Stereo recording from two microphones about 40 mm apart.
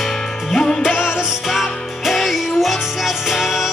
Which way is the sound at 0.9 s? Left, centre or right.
Left.